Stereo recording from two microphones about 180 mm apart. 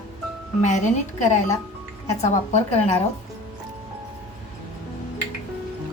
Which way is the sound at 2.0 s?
40° left (ahead or behind).